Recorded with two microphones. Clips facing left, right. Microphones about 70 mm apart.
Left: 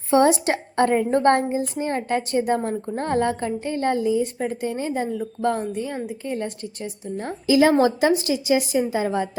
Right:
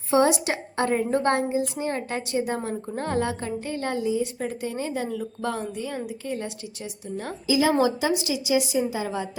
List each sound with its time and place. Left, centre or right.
0.1 s a woman's voice: left
6.2 s a woman's voice: left